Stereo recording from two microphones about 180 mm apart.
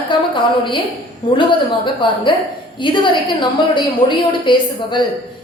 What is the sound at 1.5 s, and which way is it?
A woman's voice, 25° left (ahead or behind).